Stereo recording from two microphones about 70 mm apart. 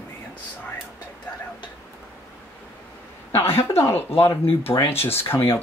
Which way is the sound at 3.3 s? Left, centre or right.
Left.